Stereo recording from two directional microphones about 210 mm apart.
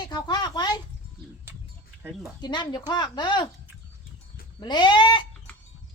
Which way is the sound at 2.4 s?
20° left (ahead or behind).